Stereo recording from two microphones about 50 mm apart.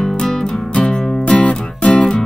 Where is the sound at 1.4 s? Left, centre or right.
Left.